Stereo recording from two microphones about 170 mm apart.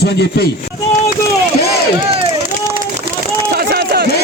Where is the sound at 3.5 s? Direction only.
65° right (ahead or behind).